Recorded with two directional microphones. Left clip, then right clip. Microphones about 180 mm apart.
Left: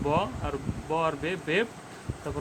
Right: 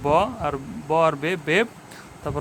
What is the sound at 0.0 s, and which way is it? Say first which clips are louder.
Speech: right 8 dB; 40° right (ahead or behind).